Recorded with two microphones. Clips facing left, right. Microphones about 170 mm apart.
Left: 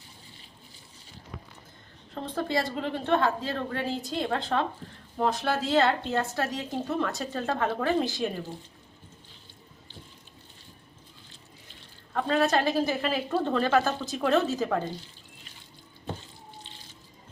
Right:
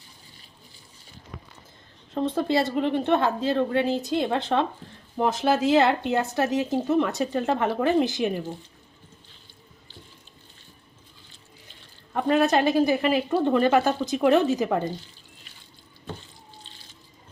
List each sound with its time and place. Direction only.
2.2 s a woman's voice: 25° right (ahead or behind)
12.1 s speech: 15° right (ahead or behind)